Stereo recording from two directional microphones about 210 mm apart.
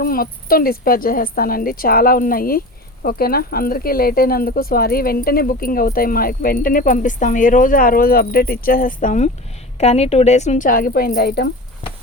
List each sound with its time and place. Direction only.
0.0 s a woman's voice: 45° left (ahead or behind)